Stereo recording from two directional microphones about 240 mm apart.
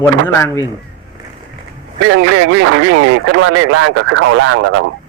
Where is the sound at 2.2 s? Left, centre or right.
Right.